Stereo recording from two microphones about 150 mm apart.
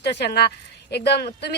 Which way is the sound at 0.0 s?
90° left.